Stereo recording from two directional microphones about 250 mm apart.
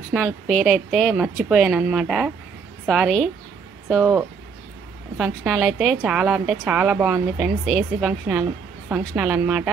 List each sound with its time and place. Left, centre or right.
0.1 s a woman's voice: centre